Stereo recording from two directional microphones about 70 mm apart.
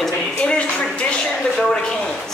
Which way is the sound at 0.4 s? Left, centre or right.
Centre.